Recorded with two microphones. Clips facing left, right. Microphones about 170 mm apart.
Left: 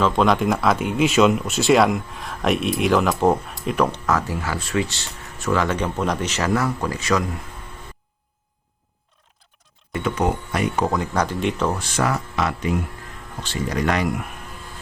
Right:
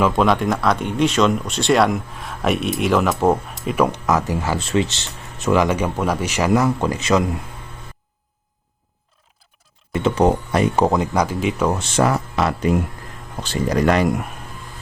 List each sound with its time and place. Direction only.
0.0 s speech: centre (ahead or behind)
4.0 s speech: 20° right (ahead or behind)
9.9 s speech: 30° right (ahead or behind)
11.0 s speech: 10° right (ahead or behind)
11.7 s speech: 25° right (ahead or behind)